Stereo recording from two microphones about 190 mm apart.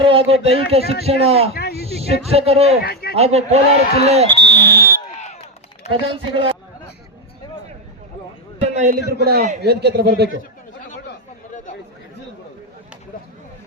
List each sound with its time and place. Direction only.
0.0 s a man's voice: 30° right (ahead or behind)
1.5 s a sound: 55° left (ahead or behind)
2.0 s a man's voice: 30° right (ahead or behind)
2.8 s speech: 55° left (ahead or behind)
3.2 s a man's voice: 35° right (ahead or behind)
4.4 s speech: 60° right (ahead or behind)
5.0 s a sound: 35° left (ahead or behind)
5.9 s speech: 25° right (ahead or behind)
8.6 s a sound: 40° right (ahead or behind)
9.2 s speech: 50° right (ahead or behind)